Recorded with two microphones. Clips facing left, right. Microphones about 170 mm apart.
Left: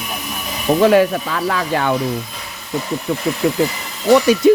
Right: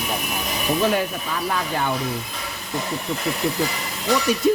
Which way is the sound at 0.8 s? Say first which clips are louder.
Left 11 dB; 90° left.